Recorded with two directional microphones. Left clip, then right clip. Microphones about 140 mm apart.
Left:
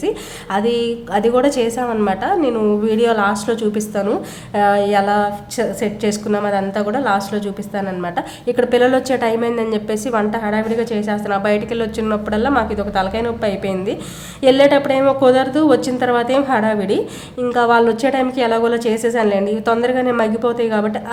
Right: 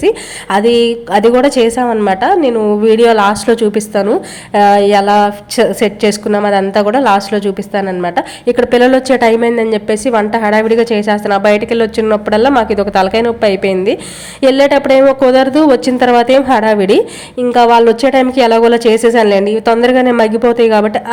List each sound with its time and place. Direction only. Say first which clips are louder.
0.0 s a woman's voice: right 9 dB; 35° right (ahead or behind)